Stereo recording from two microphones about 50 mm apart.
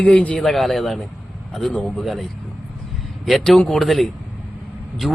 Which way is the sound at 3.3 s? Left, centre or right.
Centre.